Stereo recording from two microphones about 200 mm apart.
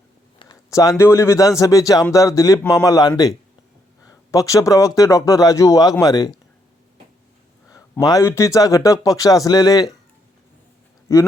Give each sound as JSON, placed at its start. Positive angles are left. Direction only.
{"t": 0.3, "sound": "speech", "side_deg": 20}
{"t": 7.7, "sound": "speech", "side_deg": 15}
{"t": 11.1, "sound": "speech", "side_deg": 15}